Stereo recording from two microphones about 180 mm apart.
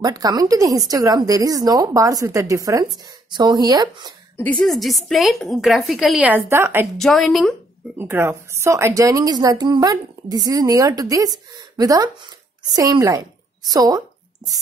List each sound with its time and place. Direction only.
0.0 s a woman's voice: 20° right (ahead or behind)
4.4 s a woman's voice: 5° left (ahead or behind); by 6.9 s 10° right (ahead or behind)
7.0 s a woman's voice: centre (ahead or behind)
8.0 s a woman's voice: 10° right (ahead or behind)